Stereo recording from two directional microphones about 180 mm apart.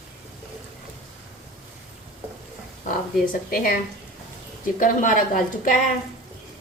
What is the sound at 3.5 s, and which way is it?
A woman's voice, 55° left (ahead or behind).